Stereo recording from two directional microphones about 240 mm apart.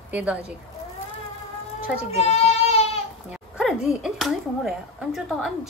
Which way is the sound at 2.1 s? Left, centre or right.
Left.